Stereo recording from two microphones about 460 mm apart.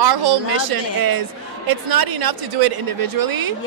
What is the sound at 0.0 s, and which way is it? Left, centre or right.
Speech, right.